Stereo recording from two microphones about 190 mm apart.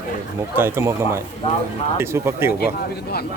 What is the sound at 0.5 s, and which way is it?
Speech, 10° right (ahead or behind).